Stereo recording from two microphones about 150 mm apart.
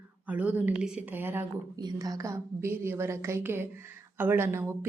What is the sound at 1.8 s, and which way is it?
A woman's voice, 25° right (ahead or behind).